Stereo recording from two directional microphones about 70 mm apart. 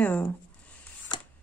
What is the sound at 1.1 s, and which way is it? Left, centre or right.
Camera, left.